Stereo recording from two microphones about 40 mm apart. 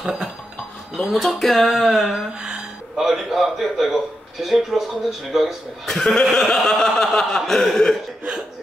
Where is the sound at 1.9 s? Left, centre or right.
Centre.